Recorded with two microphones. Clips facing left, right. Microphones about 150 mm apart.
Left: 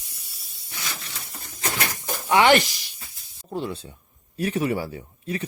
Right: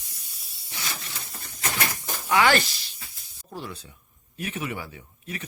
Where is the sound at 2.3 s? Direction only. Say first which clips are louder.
Left 4 dB; 20° left (ahead or behind).